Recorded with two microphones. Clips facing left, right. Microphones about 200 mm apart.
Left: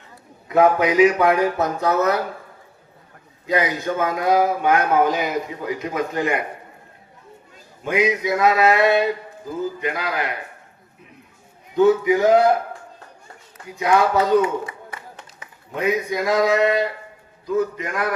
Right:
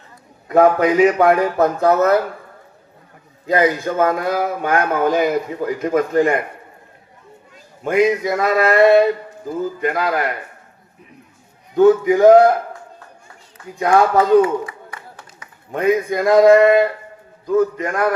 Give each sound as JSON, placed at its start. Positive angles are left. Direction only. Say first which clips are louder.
{"t": 0.4, "sound": "speech", "louder": "right 3 dB", "side_deg": -50}
{"t": 3.4, "sound": "speech", "louder": "right 5 dB", "side_deg": -50}
{"t": 7.9, "sound": "speech", "louder": "right 4 dB", "side_deg": -50}
{"t": 11.8, "sound": "speech", "louder": "right 4 dB", "side_deg": -50}
{"t": 13.7, "sound": "speech", "louder": "right 3 dB", "side_deg": -50}
{"t": 14.8, "sound": "clapping", "louder": "even", "side_deg": 25}
{"t": 15.7, "sound": "speech", "louder": "right 5 dB", "side_deg": -50}